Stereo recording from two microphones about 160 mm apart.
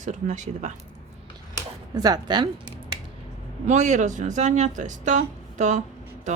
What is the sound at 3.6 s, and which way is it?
Speech, 45° right (ahead or behind).